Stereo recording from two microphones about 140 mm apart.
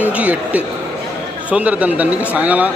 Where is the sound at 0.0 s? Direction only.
10° right (ahead or behind).